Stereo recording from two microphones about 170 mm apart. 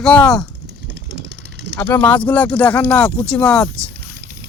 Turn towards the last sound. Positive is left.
turn(degrees=5)  # may be behind; listen again after turning